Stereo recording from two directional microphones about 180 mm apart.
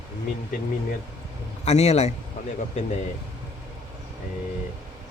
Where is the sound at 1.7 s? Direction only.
35° left (ahead or behind).